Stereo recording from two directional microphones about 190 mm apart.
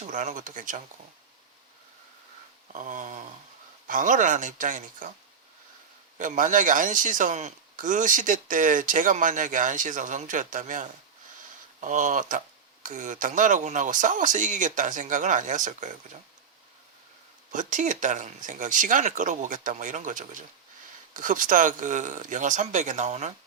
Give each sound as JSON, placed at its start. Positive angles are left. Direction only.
{"t": 0.0, "sound": "a man's voice", "side_deg": -40}
{"t": 2.7, "sound": "a man's voice", "side_deg": -40}
{"t": 6.1, "sound": "a man's voice", "side_deg": -45}
{"t": 17.5, "sound": "speech", "side_deg": -40}